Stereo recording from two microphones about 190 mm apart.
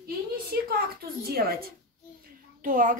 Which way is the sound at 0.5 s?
55° right (ahead or behind).